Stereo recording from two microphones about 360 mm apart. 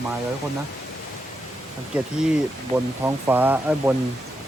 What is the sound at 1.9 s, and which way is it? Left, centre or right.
Speech, centre.